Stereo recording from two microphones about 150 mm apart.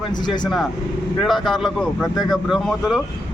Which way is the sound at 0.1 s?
30° left (ahead or behind).